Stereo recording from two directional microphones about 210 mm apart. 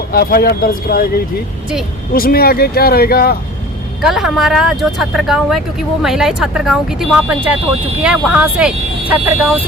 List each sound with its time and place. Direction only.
0.1 s speech: 45° left (ahead or behind)
2.1 s speech: 45° left (ahead or behind)
4.0 s speech: centre (ahead or behind)